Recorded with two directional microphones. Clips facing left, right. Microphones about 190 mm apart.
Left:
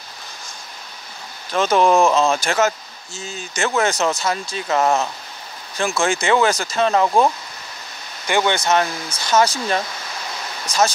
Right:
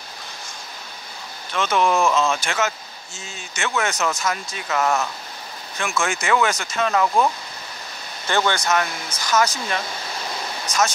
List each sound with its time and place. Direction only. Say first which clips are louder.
1.5 s speech: left 5 dB; 35° left (ahead or behind)
8.3 s speech: left 2 dB; 15° left (ahead or behind)
8.5 s speech: left 3 dB; 30° left (ahead or behind)